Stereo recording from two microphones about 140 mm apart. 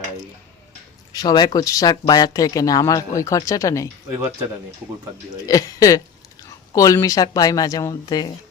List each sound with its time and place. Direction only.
1.1 s speech: 30° left (ahead or behind)
5.5 s speech: 25° left (ahead or behind)